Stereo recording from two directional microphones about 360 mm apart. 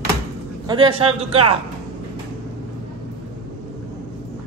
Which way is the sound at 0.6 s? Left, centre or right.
Centre.